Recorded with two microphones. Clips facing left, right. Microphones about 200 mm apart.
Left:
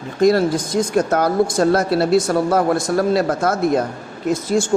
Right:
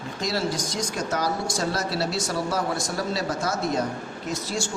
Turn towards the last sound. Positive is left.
turn(degrees=50)  # may be behind; listen again after turning